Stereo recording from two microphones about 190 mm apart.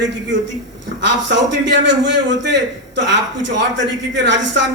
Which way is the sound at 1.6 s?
65° right (ahead or behind).